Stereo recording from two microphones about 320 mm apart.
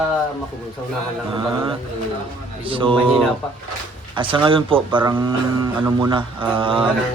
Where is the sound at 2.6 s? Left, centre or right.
Centre.